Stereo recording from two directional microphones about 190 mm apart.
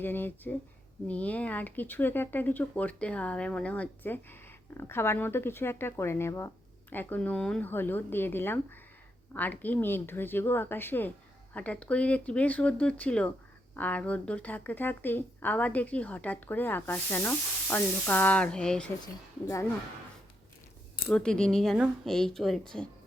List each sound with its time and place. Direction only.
0.0 s speech: 10° left (ahead or behind)
19.0 s a woman's voice: 15° left (ahead or behind)
21.1 s speech: 5° left (ahead or behind)